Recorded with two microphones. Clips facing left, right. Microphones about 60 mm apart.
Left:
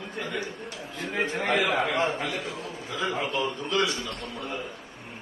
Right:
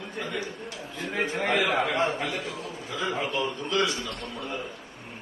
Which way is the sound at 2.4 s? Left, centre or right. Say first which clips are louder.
Even; left.